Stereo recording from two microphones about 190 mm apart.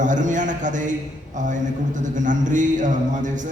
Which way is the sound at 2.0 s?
40° right (ahead or behind).